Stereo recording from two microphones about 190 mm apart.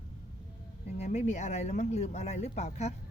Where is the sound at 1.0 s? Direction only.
35° left (ahead or behind).